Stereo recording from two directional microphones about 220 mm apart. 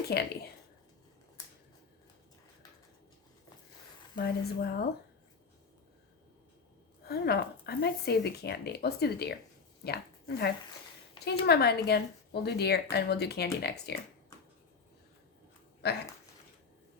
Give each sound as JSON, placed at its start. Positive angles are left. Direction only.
{"t": 0.1, "sound": "speech", "side_deg": 45}
{"t": 4.1, "sound": "speech", "side_deg": 45}
{"t": 7.1, "sound": "speech", "side_deg": 45}
{"t": 15.8, "sound": "speech", "side_deg": 50}